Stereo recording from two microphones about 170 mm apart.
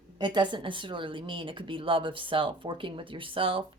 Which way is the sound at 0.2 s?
25° right (ahead or behind).